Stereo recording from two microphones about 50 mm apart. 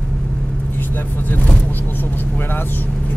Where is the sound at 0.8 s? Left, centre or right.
Left.